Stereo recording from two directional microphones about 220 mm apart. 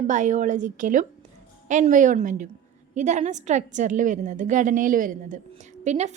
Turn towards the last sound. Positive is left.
turn(degrees=-30)  # may be behind; listen again after turning